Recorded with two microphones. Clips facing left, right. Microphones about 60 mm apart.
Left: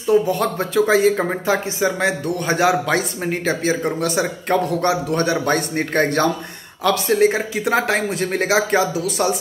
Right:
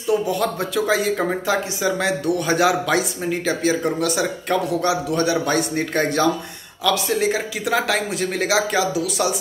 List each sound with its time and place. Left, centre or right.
0.3 s speech: left